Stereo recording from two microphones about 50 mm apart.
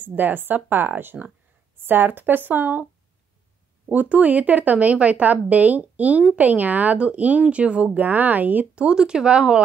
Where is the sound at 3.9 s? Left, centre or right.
Right.